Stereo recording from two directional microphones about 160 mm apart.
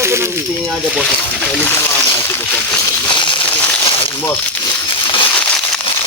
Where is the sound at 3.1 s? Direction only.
30° left (ahead or behind).